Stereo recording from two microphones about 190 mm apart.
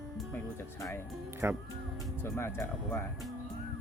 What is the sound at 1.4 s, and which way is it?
Speech, 10° right (ahead or behind).